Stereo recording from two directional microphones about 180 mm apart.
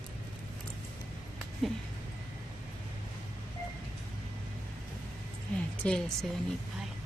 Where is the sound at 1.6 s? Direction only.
Centre (ahead or behind).